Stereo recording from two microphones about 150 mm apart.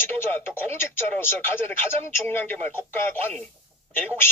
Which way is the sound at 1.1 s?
15° left (ahead or behind).